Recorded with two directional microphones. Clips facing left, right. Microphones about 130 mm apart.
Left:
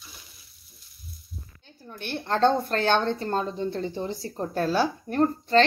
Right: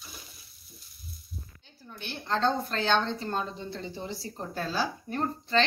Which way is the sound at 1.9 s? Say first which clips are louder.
Left 4 dB; 45° left (ahead or behind).